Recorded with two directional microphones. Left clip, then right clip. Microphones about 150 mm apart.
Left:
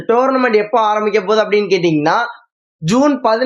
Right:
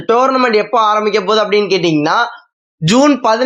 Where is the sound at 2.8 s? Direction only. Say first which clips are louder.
Right 3 dB; 40° right (ahead or behind).